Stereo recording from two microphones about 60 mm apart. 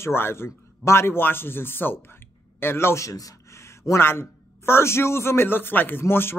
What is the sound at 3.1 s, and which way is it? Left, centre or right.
Speech, left.